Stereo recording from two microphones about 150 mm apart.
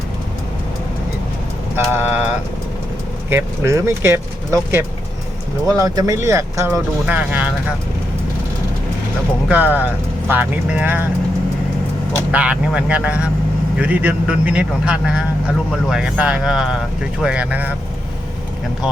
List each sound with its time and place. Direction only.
1.7 s vehicle: 15° right (ahead or behind)
3.2 s speech: 15° right (ahead or behind)
9.5 s speech: 10° right (ahead or behind)
12.3 s speech: 10° right (ahead or behind)